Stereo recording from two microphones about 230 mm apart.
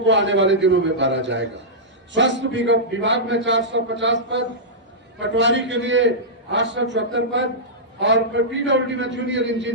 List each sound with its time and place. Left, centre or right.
0.0 s a man's voice: right